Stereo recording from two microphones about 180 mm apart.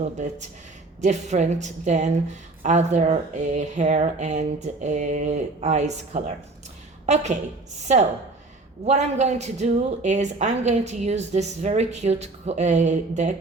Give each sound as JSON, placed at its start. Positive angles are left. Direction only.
{"t": 0.0, "sound": "a woman's voice", "side_deg": -40}